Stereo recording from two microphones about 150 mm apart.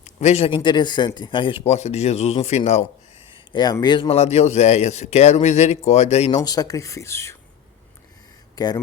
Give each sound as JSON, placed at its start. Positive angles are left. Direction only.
{"t": 0.0, "sound": "speech", "side_deg": 45}
{"t": 3.3, "sound": "speech", "side_deg": 30}
{"t": 4.2, "sound": "speech", "side_deg": 45}
{"t": 6.4, "sound": "speech", "side_deg": 25}
{"t": 8.5, "sound": "speech", "side_deg": 25}